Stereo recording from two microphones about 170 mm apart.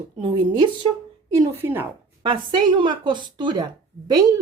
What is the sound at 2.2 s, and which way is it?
Speech, 30° right (ahead or behind).